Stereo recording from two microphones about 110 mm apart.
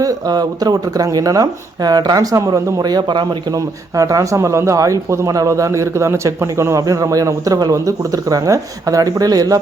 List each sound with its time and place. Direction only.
0.0 s speech: 35° right (ahead or behind)